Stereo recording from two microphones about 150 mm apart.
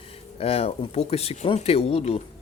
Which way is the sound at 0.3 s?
40° left (ahead or behind).